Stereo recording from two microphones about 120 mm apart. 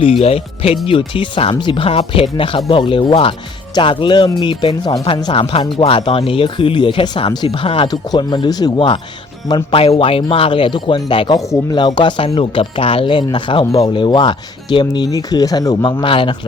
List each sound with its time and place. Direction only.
0.0 s speech: 55° left (ahead or behind)
0.9 s speech: 45° left (ahead or behind)
7.9 s speech: 35° left (ahead or behind)
9.7 s speech: 50° left (ahead or behind)